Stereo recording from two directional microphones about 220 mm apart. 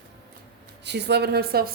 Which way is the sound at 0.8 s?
50° right (ahead or behind).